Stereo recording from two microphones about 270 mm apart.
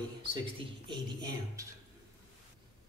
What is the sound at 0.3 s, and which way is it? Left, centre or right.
Speech, centre.